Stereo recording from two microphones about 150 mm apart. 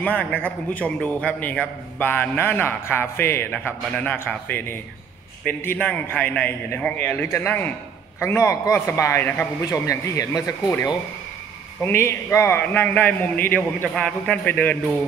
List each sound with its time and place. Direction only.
0.0 s a man's voice: 10° left (ahead or behind)